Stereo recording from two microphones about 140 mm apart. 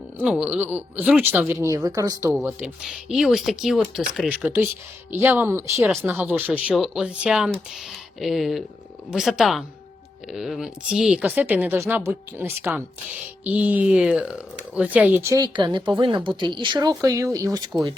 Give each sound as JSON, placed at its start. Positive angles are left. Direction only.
{"t": 0.2, "sound": "speech", "side_deg": -10}
{"t": 2.5, "sound": "speech", "side_deg": -10}
{"t": 4.4, "sound": "speech", "side_deg": -15}
{"t": 15.5, "sound": "speech", "side_deg": -35}
{"t": 17.0, "sound": "speech", "side_deg": -20}